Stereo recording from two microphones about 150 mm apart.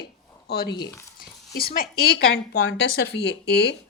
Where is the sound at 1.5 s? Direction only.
80° left.